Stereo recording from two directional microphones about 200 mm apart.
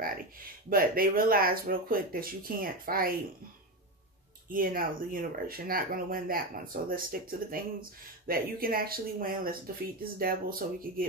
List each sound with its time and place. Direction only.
0.0 s speech: 45° right (ahead or behind)
4.5 s speech: 45° right (ahead or behind)